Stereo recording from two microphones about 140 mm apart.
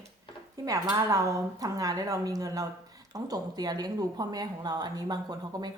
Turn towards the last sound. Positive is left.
turn(degrees=-30)  # may be behind; listen again after turning